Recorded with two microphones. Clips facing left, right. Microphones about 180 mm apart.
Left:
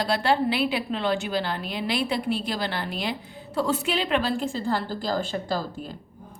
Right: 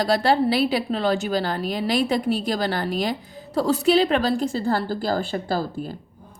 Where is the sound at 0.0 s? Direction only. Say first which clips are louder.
Right 4 dB; 40° right (ahead or behind).